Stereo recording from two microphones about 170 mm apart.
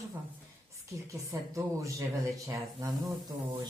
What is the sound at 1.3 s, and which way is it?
Speech, 20° right (ahead or behind).